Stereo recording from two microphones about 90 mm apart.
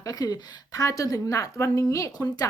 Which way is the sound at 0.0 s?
45° left (ahead or behind).